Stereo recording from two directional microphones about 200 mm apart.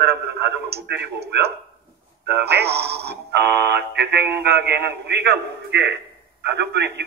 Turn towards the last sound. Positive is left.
turn(degrees=-55)  # may be behind; listen again after turning